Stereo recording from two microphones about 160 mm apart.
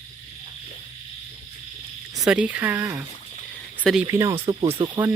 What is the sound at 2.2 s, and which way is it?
Speech, 5° right (ahead or behind).